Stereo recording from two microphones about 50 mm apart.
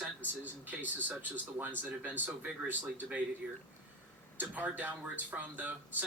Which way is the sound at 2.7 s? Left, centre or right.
Right.